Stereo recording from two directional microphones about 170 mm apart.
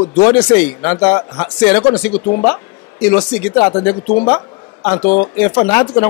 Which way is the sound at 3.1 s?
20° left (ahead or behind).